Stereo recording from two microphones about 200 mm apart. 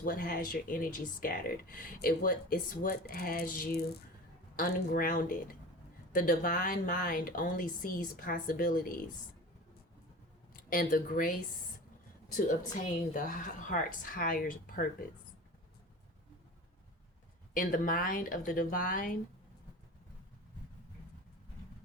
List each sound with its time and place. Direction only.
0.0 s speech: 45° left (ahead or behind)
10.5 s speech: 45° left (ahead or behind)
13.1 s speech: 40° left (ahead or behind)
17.5 s speech: 45° left (ahead or behind)